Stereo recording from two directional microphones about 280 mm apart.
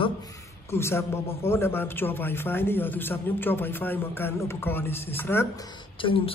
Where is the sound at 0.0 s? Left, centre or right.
Centre.